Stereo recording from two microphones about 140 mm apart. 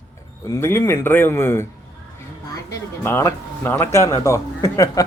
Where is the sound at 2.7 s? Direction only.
20° left (ahead or behind).